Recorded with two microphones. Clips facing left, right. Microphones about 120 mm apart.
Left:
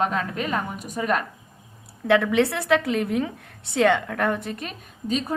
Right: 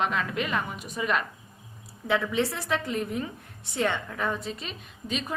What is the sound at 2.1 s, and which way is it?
A woman's voice, 75° left (ahead or behind).